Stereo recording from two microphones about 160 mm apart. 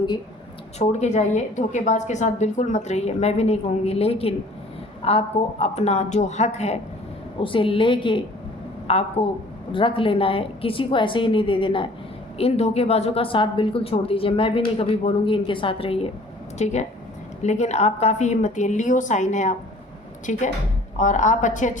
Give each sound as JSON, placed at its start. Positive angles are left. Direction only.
{"t": 0.8, "sound": "a woman's voice", "side_deg": 45}
{"t": 7.4, "sound": "a woman's voice", "side_deg": 35}